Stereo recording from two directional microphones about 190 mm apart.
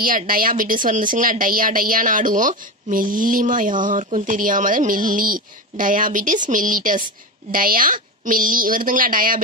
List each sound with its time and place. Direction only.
0.0 s speech: 45° right (ahead or behind)